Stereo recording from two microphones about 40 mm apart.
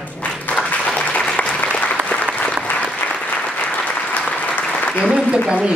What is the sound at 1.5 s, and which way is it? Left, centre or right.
Applause, left.